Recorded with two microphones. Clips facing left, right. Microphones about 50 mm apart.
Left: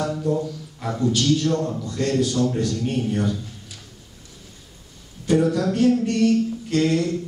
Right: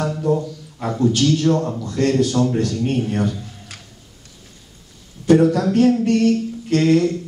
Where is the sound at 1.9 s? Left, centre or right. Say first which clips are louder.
Right 5 dB; right.